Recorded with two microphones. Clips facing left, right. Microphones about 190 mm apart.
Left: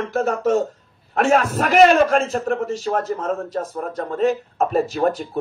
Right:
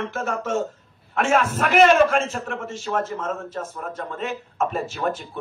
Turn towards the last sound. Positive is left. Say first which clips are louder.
# left 6 dB
turn(degrees=40)  # may be behind; listen again after turning